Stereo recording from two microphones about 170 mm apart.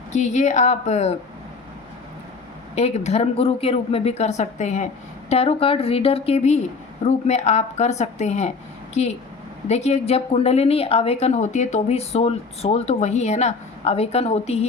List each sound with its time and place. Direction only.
0.1 s a woman's voice: 45° left (ahead or behind)
2.7 s a woman's voice: 40° left (ahead or behind)